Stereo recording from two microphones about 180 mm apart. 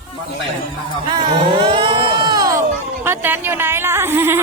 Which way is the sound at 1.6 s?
30° right (ahead or behind).